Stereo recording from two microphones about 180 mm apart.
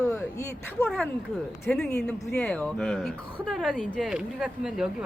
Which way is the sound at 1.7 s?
5° left (ahead or behind).